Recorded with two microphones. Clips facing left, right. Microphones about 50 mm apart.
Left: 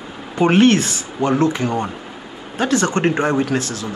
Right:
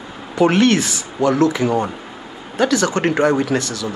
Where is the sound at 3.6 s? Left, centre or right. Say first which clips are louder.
Even; right.